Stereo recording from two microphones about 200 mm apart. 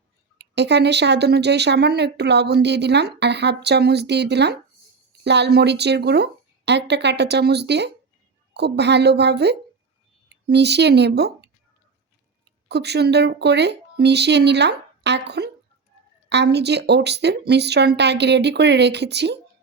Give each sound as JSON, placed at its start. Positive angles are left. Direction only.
{"t": 0.3, "sound": "speech", "side_deg": -60}
{"t": 12.6, "sound": "speech", "side_deg": -55}